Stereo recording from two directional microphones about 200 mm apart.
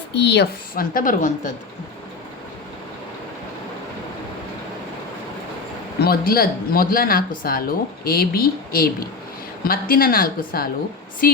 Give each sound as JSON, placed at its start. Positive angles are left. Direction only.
{"t": 0.1, "sound": "speech", "side_deg": 60}
{"t": 6.0, "sound": "speech", "side_deg": 50}